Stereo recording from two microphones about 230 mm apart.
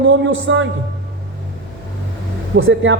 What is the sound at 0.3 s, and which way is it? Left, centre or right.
Speech, right.